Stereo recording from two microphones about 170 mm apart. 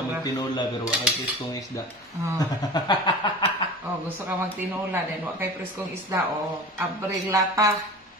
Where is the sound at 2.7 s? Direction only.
25° left (ahead or behind).